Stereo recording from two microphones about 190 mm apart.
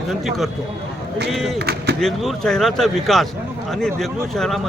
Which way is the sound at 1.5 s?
55° right (ahead or behind).